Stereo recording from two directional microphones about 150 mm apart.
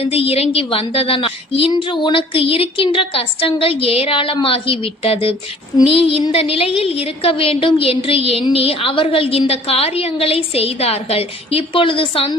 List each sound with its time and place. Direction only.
0.0 s a woman's voice: 40° left (ahead or behind)